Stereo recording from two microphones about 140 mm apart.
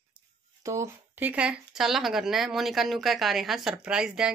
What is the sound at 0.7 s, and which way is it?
Speech, 20° right (ahead or behind).